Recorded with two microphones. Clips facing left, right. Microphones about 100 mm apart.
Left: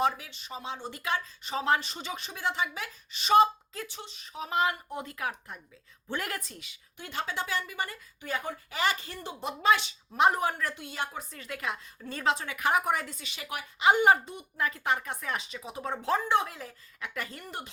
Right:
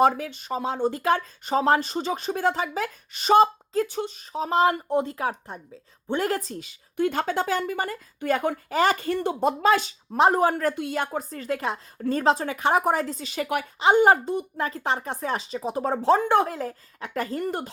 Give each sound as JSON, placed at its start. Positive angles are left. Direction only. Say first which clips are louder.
{"t": 0.0, "sound": "a woman's voice", "louder": "right 8 dB", "side_deg": -45}
{"t": 6.9, "sound": "speech", "louder": "right 11 dB", "side_deg": -50}
{"t": 8.2, "sound": "speech", "louder": "right 10 dB", "side_deg": -60}
{"t": 8.7, "sound": "a woman's voice", "louder": "right 8 dB", "side_deg": -40}
{"t": 10.8, "sound": "a woman's voice", "louder": "right 9 dB", "side_deg": -55}
{"t": 13.4, "sound": "speech", "louder": "right 12 dB", "side_deg": -60}
{"t": 13.7, "sound": "a woman's voice", "louder": "right 4 dB", "side_deg": -30}